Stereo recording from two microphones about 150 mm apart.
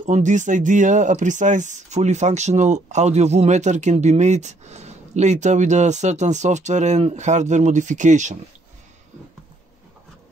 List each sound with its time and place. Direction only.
0.0 s speech: 55° right (ahead or behind)